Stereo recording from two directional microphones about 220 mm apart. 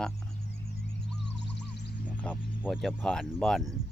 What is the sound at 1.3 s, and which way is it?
Music, 50° left (ahead or behind).